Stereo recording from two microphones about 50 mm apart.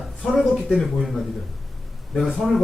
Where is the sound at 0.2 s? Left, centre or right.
Centre.